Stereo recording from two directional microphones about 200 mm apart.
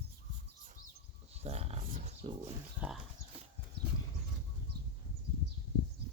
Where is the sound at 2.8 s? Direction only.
5° right (ahead or behind).